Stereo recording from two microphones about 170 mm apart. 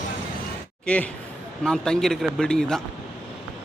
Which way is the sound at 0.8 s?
5° left (ahead or behind).